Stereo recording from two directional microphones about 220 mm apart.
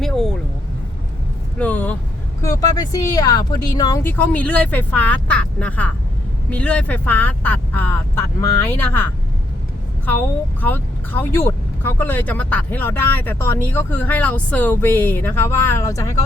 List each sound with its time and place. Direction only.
0.0 s vehicle: centre (ahead or behind)
1.5 s speech: 5° left (ahead or behind)
10.6 s speech: 10° left (ahead or behind)